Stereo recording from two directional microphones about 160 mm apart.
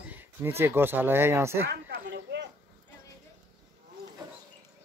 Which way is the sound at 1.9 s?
90° right.